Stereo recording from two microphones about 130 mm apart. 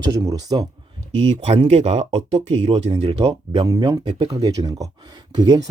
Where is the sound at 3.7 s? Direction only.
30° right (ahead or behind).